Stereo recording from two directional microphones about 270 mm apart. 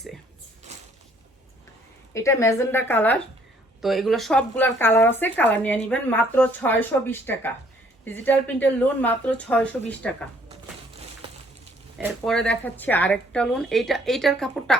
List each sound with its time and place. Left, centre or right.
0.7 s a sound: right
2.1 s speech: centre
11.9 s speech: centre